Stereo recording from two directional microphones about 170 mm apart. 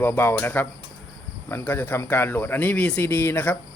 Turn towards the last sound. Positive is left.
turn(degrees=10)  # may be behind; listen again after turning